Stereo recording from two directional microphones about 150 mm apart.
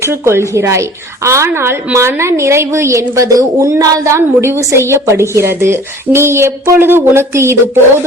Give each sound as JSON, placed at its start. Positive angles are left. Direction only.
{"t": 0.0, "sound": "a woman's voice", "side_deg": -15}